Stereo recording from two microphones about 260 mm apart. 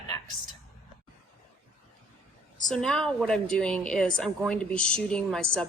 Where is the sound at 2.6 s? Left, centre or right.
Centre.